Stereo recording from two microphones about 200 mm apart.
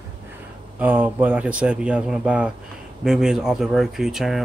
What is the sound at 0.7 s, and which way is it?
Speech, 10° right (ahead or behind).